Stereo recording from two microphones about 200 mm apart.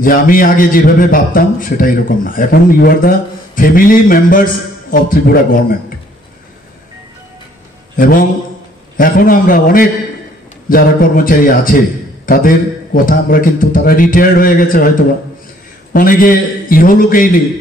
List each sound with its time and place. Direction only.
0.0 s a man's voice: 45° left (ahead or behind)
7.9 s a man's voice: 45° left (ahead or behind)
12.9 s a man's voice: 45° left (ahead or behind)
15.9 s a man's voice: 45° left (ahead or behind)